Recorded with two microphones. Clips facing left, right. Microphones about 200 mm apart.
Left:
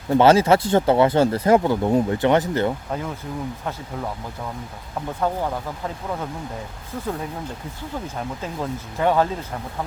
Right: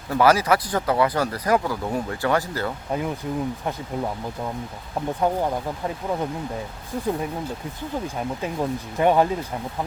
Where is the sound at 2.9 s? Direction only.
10° right (ahead or behind).